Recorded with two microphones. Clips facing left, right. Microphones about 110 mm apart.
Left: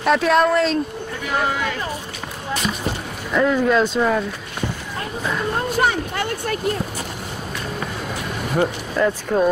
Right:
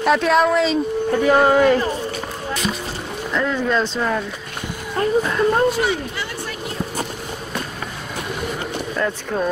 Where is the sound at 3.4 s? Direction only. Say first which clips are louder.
Left 4 dB; 10° left (ahead or behind).